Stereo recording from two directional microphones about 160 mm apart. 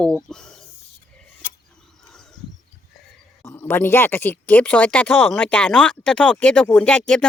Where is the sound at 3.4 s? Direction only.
15° left (ahead or behind).